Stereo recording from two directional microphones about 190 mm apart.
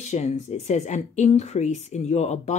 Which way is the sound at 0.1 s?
35° left (ahead or behind).